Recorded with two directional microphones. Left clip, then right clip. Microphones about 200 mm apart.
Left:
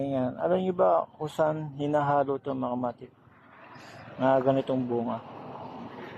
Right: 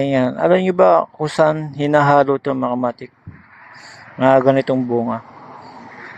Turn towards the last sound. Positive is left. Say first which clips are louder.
# right 11 dB
turn(degrees=-20)  # may be behind; listen again after turning